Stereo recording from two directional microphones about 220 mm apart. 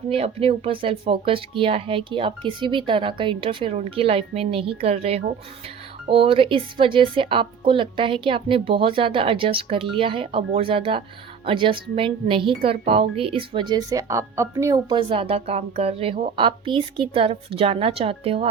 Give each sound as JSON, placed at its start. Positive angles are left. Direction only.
{"t": 0.1, "sound": "speech", "side_deg": -25}